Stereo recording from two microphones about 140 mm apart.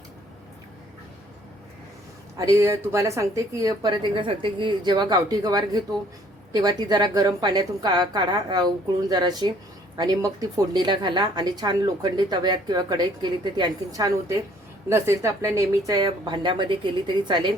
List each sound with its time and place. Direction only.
2.5 s a woman's voice: 20° right (ahead or behind)